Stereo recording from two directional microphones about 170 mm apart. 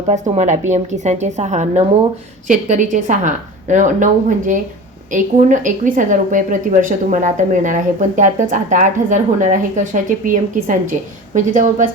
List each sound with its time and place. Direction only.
0.1 s a woman's voice: 40° right (ahead or behind)